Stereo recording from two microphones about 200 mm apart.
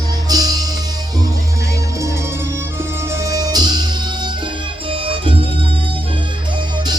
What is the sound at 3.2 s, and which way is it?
Music, 20° right (ahead or behind).